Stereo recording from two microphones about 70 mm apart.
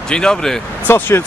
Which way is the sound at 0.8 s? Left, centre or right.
Left.